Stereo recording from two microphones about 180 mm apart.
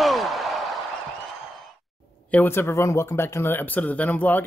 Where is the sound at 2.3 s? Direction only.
10° left (ahead or behind).